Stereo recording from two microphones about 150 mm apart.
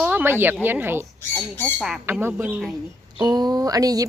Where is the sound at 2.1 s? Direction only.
15° right (ahead or behind).